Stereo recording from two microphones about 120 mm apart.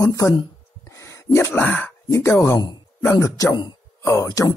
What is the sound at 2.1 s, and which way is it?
Speech, 25° left (ahead or behind).